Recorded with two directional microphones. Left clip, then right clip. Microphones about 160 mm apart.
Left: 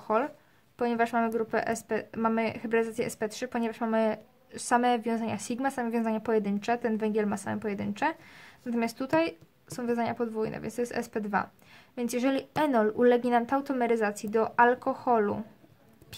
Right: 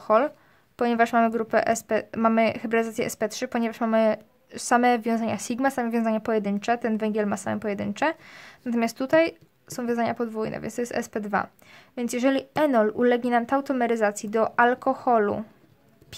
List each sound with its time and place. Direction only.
0.0 s a woman's voice: 40° right (ahead or behind)
16.1 s mouse: 35° right (ahead or behind)